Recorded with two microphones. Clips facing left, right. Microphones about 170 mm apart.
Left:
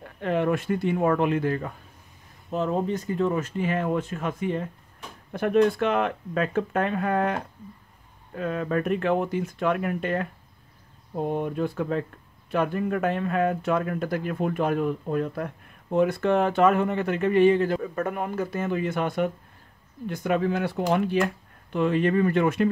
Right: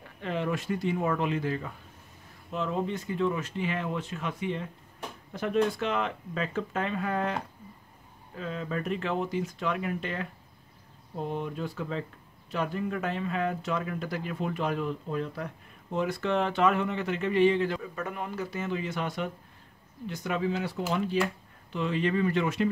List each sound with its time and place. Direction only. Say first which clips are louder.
0.0 s speech: left 7 dB; 55° left (ahead or behind)
2.5 s speech: left 5 dB; 40° left (ahead or behind)
5.3 s speech: left 6 dB; 60° left (ahead or behind)
8.4 s speech: left 7 dB; 55° left (ahead or behind)